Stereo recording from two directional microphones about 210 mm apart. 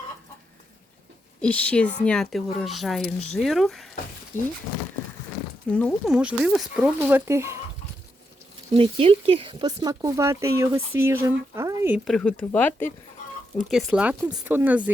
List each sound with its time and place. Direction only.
1.4 s speech: 5° left (ahead or behind)
5.7 s speech: centre (ahead or behind)
8.7 s speech: 25° right (ahead or behind)
12.0 s speech: 5° left (ahead or behind)
13.7 s speech: 5° right (ahead or behind)